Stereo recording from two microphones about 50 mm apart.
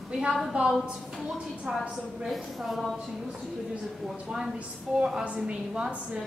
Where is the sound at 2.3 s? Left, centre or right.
Centre.